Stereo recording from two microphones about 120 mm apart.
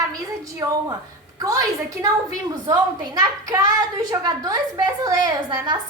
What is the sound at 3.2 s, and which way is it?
A woman's voice, 30° right (ahead or behind).